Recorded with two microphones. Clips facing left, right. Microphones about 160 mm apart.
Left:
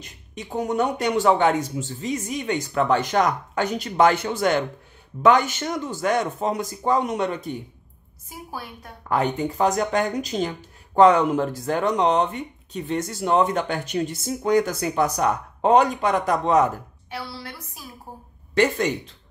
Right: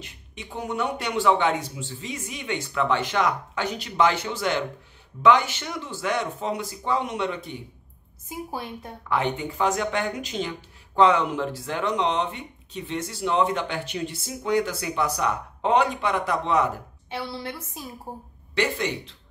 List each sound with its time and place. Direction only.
0.0 s speech: 40° left (ahead or behind)
8.3 s a woman's voice: 20° right (ahead or behind)
9.1 s speech: 40° left (ahead or behind)
17.1 s a woman's voice: 20° right (ahead or behind)
18.5 s speech: 45° left (ahead or behind)